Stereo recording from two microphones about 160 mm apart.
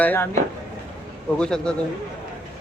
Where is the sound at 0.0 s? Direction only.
10° left (ahead or behind).